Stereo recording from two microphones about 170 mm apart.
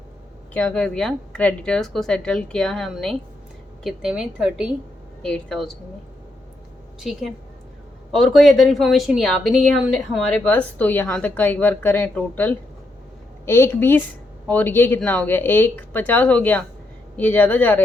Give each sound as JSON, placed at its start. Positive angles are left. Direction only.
{"t": 0.5, "sound": "speech", "side_deg": 5}
{"t": 7.0, "sound": "speech", "side_deg": 0}